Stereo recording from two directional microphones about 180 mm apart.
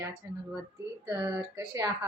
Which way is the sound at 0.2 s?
15° right (ahead or behind).